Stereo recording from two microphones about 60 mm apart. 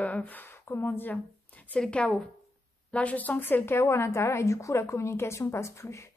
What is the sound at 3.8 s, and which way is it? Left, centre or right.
A woman's voice, left.